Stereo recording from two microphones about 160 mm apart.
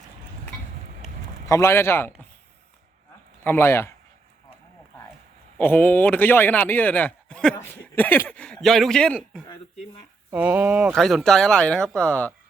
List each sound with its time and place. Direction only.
1.5 s speech: 15° left (ahead or behind)
3.4 s speech: 15° left (ahead or behind)
5.5 s speech: 10° left (ahead or behind)
10.3 s speech: 10° right (ahead or behind); by 12.3 s 10° left (ahead or behind)